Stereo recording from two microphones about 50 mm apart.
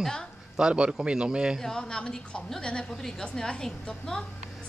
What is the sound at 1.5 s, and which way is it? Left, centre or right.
A woman's voice, centre.